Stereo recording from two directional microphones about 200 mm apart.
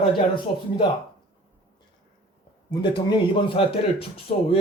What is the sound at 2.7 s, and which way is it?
A man's voice, 20° left (ahead or behind).